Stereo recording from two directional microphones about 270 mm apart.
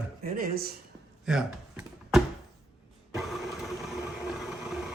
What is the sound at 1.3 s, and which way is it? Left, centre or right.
Speech, centre.